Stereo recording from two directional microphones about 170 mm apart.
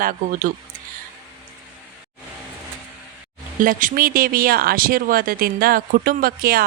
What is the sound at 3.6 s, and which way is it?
Speech, 50° right (ahead or behind).